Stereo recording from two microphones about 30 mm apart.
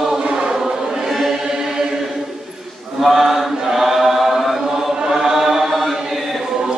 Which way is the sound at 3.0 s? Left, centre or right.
Centre.